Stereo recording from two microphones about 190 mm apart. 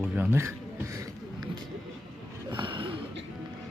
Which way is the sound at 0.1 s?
10° right (ahead or behind).